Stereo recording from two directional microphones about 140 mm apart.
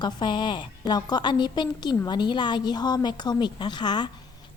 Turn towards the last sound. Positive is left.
turn(degrees=30)  # may be behind; listen again after turning